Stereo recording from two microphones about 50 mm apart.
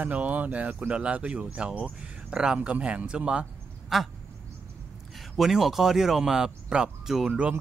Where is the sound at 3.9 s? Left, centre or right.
Centre.